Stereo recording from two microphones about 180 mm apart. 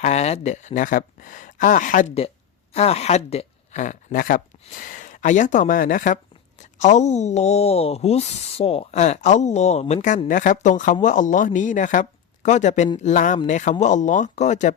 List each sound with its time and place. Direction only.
0.0 s speech: 40° left (ahead or behind)
2.7 s speech: 35° left (ahead or behind)